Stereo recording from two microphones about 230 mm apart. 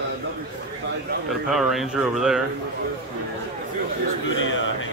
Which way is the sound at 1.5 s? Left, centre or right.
Centre.